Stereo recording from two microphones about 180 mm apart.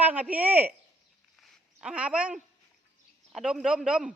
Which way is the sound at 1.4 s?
Centre (ahead or behind).